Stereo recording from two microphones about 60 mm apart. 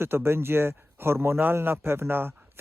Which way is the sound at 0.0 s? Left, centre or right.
Right.